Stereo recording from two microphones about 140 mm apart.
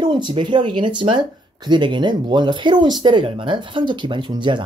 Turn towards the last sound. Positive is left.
turn(degrees=-35)  # may be behind; listen again after turning